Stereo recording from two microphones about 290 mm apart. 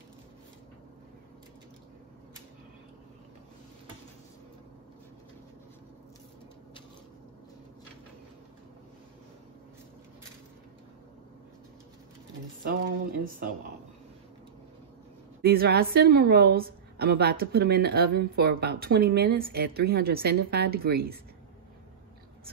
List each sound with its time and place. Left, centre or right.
12.6 s speech: right
15.4 s a woman's voice: right